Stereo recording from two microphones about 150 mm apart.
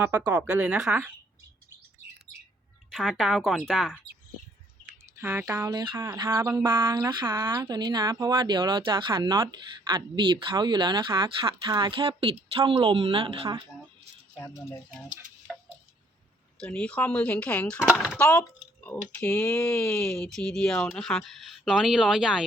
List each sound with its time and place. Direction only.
0.0 s a woman's voice: 15° right (ahead or behind)
2.9 s speech: centre (ahead or behind)
5.1 s speech: 15° right (ahead or behind)
6.0 s speech: 20° right (ahead or behind); by 13.5 s 35° right (ahead or behind)
16.6 s speech: 5° left (ahead or behind)
17.7 s speech: 5° right (ahead or behind)
18.2 s speech: 10° left (ahead or behind)